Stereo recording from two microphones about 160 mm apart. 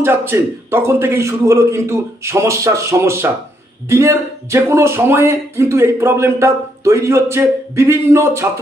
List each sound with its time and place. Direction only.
0.0 s speech: 15° right (ahead or behind)